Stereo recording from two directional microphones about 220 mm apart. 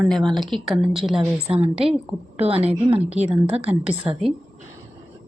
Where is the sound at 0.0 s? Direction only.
Centre (ahead or behind).